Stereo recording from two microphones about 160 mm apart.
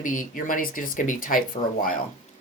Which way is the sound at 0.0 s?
55° left (ahead or behind).